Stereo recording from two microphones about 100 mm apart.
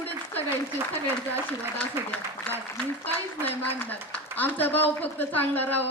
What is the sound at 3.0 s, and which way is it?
A woman's voice, 20° left (ahead or behind).